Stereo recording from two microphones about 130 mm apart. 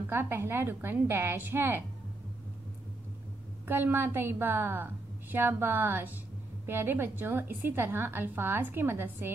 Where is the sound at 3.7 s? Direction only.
15° right (ahead or behind).